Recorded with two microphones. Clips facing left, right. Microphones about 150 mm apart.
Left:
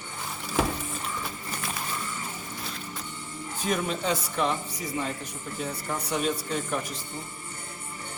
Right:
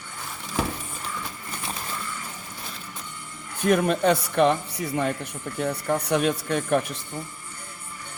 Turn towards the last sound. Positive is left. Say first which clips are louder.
# right 7 dB
turn(degrees=-65)  # may be behind; listen again after turning